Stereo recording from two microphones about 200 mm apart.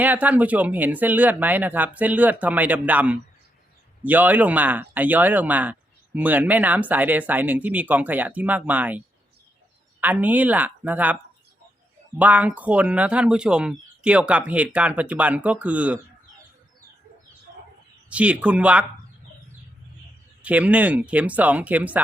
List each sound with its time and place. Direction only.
0.0 s speech: 10° right (ahead or behind)
18.1 s speech: 5° right (ahead or behind)
20.4 s speech: 5° right (ahead or behind)